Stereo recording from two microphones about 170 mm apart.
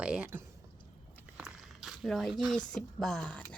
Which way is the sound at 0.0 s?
5° right (ahead or behind).